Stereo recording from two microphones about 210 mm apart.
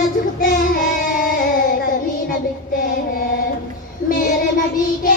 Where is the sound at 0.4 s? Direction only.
40° left (ahead or behind).